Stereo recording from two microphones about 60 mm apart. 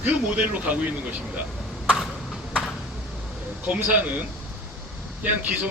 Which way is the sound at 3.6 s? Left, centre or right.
Right.